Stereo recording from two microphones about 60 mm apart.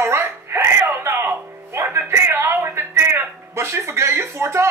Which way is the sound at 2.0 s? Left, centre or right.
Right.